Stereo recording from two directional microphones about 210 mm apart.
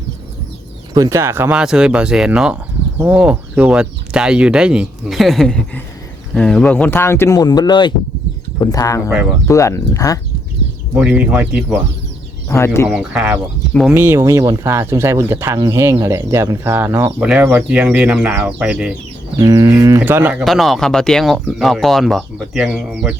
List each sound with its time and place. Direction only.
0.9 s speech: 15° right (ahead or behind); by 10.2 s 15° left (ahead or behind)
10.9 s speech: 5° right (ahead or behind)
12.5 s speech: 10° left (ahead or behind)
12.9 s speech: 5° right (ahead or behind)
19.4 s speech: 15° right (ahead or behind)